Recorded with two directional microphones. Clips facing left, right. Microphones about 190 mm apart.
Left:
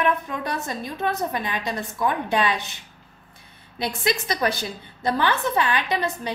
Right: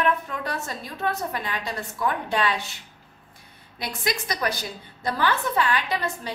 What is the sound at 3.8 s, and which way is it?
A woman's voice, 25° left (ahead or behind).